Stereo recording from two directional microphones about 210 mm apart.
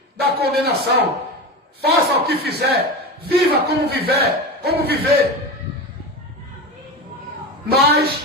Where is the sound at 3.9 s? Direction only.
50° right (ahead or behind).